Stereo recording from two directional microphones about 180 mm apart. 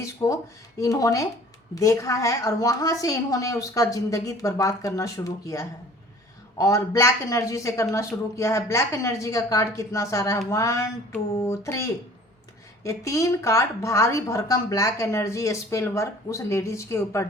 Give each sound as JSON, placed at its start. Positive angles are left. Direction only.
{"t": 0.0, "sound": "a woman's voice", "side_deg": 15}